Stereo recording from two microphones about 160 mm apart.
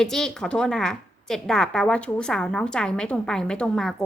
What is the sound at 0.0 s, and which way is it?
A woman's voice, 5° left (ahead or behind).